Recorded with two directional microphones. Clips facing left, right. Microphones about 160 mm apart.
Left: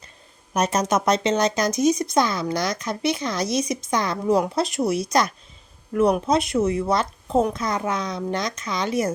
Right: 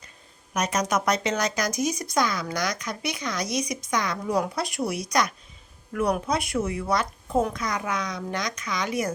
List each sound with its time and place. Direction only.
0.5 s speech: 30° left (ahead or behind)